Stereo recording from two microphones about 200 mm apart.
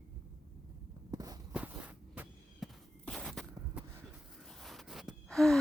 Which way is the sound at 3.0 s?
Centre (ahead or behind).